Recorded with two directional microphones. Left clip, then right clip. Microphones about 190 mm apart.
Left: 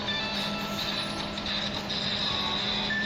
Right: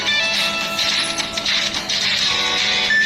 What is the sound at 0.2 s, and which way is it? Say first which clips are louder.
Music: right 12 dB; 50° right (ahead or behind).